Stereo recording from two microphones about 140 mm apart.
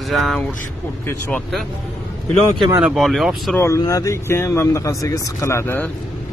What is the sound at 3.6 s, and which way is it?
Speech, 20° left (ahead or behind).